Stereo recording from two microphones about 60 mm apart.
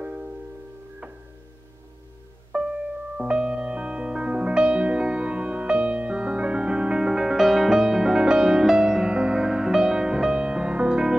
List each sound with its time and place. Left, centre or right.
0.0 s music: right
2.5 s music: right
3.2 s music: centre